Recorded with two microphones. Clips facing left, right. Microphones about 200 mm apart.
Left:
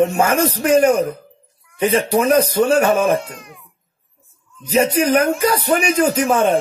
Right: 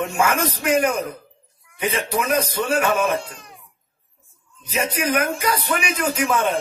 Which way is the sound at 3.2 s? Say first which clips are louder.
Left 4 dB; 30° right (ahead or behind).